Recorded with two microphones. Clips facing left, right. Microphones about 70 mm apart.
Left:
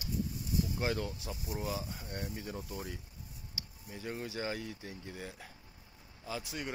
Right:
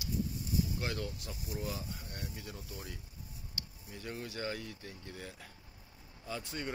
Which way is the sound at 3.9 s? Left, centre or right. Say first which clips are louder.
Left 2 dB; centre.